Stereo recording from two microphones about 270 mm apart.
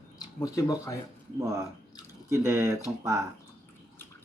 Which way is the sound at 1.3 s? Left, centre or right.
Centre.